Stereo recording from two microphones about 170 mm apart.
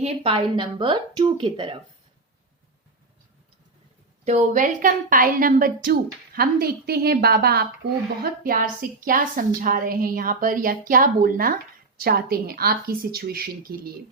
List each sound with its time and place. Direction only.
0.0 s speech: 30° right (ahead or behind)
4.3 s a woman's voice: 45° right (ahead or behind); by 13.9 s 65° right (ahead or behind)